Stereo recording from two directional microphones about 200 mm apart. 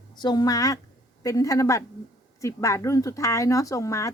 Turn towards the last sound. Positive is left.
turn(degrees=15)  # may be behind; listen again after turning